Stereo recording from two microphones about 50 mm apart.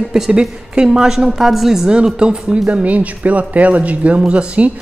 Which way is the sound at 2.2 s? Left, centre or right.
Centre.